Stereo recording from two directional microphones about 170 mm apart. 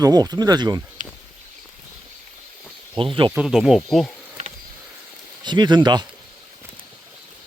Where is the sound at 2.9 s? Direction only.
30° right (ahead or behind).